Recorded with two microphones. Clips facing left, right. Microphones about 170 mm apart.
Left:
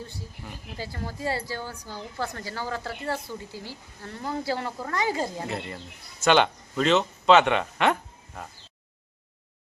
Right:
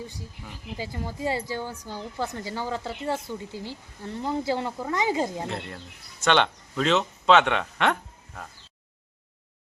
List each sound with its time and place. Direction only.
0.4 s speech: centre (ahead or behind)
0.8 s a woman's voice: 15° right (ahead or behind)
5.5 s speech: 5° left (ahead or behind)